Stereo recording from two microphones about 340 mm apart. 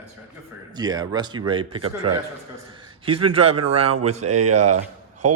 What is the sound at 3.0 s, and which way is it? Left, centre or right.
Speech, centre.